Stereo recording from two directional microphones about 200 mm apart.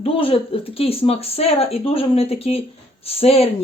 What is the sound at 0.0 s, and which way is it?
Speech, 25° left (ahead or behind).